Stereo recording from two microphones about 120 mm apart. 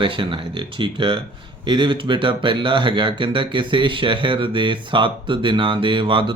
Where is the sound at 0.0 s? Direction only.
45° right (ahead or behind).